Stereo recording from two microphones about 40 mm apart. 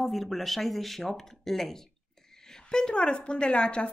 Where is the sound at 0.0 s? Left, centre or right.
Centre.